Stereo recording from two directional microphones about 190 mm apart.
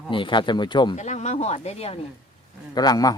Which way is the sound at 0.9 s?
35° left (ahead or behind).